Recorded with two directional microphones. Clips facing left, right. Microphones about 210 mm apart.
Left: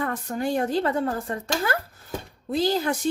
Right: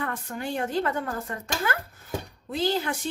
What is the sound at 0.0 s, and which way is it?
Speech, 40° left (ahead or behind).